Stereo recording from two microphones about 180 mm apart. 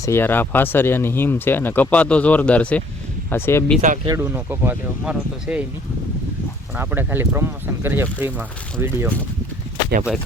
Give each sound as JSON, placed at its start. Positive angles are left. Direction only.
{"t": 0.0, "sound": "speech", "side_deg": 15}
{"t": 3.8, "sound": "speech", "side_deg": -40}
{"t": 4.0, "sound": "speech", "side_deg": -20}
{"t": 6.7, "sound": "speech", "side_deg": -10}